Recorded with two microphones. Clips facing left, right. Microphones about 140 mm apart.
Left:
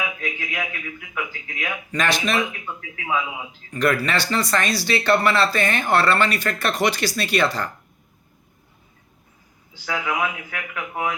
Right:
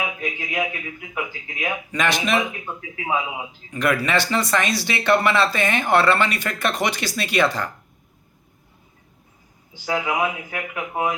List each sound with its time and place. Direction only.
0.0 s a man's voice: 20° right (ahead or behind)
9.8 s a man's voice: 25° right (ahead or behind)